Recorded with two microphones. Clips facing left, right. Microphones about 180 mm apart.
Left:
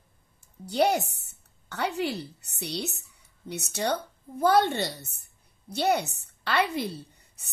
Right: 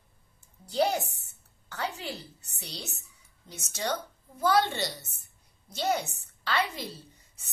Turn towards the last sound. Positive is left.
turn(degrees=60)  # may be behind; listen again after turning